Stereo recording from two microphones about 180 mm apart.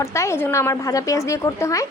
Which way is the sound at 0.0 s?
15° left (ahead or behind).